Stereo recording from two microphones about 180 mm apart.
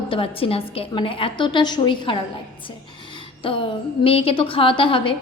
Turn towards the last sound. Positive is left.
turn(degrees=30)  # may be behind; listen again after turning